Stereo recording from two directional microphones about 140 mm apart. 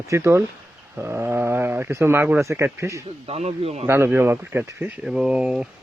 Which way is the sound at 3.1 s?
50° right (ahead or behind).